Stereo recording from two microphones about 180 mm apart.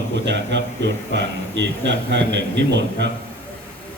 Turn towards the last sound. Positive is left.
turn(degrees=-75)  # may be behind; listen again after turning